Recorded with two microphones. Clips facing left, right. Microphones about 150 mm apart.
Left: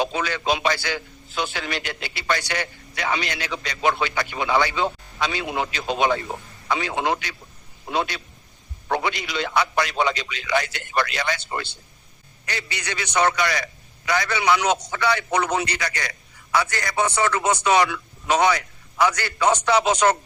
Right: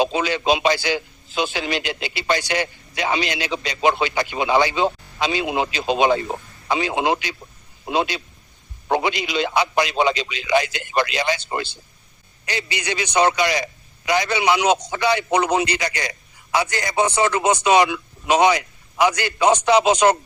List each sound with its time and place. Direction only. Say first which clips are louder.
0.0 s a man's voice: right 4 dB; 20° right (ahead or behind)